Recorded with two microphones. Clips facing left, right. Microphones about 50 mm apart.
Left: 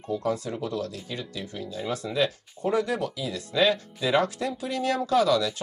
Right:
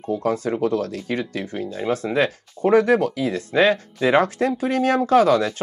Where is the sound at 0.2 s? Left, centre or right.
Right.